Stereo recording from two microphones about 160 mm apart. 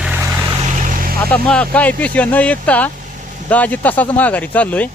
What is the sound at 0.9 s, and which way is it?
Vehicle, 65° right (ahead or behind).